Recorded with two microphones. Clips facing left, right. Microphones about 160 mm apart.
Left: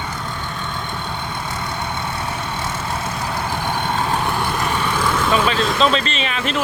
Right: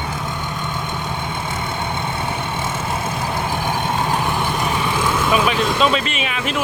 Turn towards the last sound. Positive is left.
turn(degrees=-5)  # may be behind; listen again after turning